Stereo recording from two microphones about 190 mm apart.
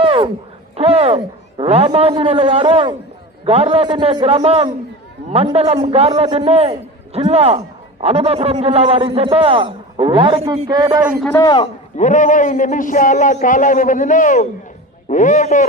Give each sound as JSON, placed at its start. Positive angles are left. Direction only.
{"t": 0.0, "sound": "a sound", "side_deg": -30}
{"t": 0.8, "sound": "a man's voice", "side_deg": -30}
{"t": 11.3, "sound": "a man's voice", "side_deg": 15}
{"t": 11.9, "sound": "a man's voice", "side_deg": 40}